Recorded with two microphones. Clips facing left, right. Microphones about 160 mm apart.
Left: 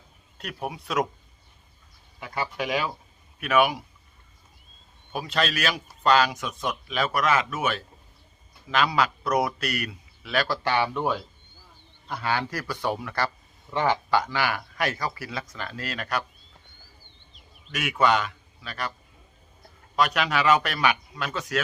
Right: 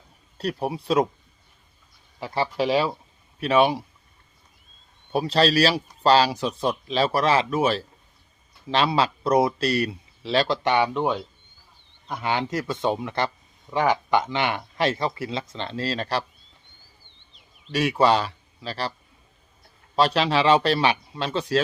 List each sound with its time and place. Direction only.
0.3 s speech: 35° right (ahead or behind)
2.1 s speech: 30° right (ahead or behind)
5.1 s speech: 35° right (ahead or behind)
17.7 s a man's voice: 30° right (ahead or behind)
20.0 s speech: 30° right (ahead or behind)